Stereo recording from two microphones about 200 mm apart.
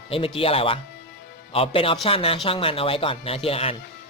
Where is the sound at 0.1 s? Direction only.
30° left (ahead or behind).